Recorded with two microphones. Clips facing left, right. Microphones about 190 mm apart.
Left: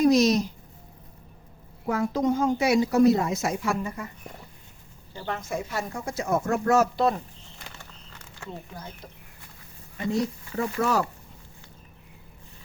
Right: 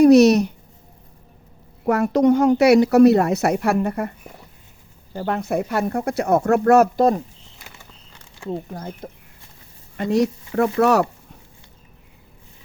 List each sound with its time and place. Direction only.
0.0 s speech: 65° right (ahead or behind)
1.9 s a woman's voice: 70° right (ahead or behind)
5.1 s speech: 55° right (ahead or behind)
8.4 s speech: 45° right (ahead or behind)
10.0 s a woman's voice: 70° right (ahead or behind)